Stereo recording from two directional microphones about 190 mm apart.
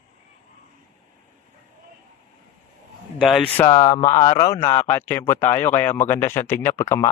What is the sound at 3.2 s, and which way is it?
Speech, centre (ahead or behind).